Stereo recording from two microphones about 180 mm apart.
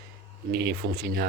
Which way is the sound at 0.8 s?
60° right (ahead or behind).